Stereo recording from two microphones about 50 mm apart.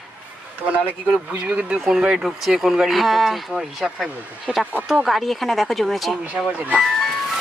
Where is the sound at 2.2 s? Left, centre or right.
Centre.